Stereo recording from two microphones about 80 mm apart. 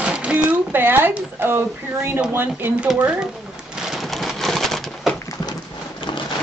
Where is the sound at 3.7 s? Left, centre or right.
Centre.